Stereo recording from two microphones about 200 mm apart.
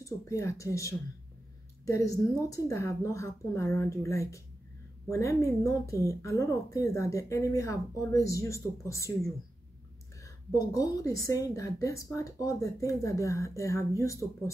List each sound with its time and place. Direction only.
0.0 s speech: 15° left (ahead or behind)
10.7 s speech: 15° left (ahead or behind)